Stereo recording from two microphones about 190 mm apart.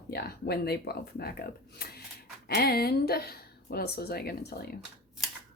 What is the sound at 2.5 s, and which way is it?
Speech, 55° left (ahead or behind).